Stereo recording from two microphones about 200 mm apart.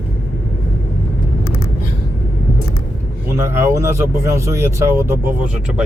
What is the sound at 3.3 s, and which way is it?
Speech, 15° right (ahead or behind).